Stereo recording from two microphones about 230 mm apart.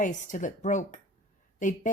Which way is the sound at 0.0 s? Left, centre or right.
Left.